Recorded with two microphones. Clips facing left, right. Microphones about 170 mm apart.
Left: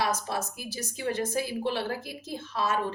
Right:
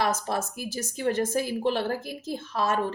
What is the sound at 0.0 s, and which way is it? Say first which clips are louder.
A woman's voice: right 3 dB; 50° right (ahead or behind).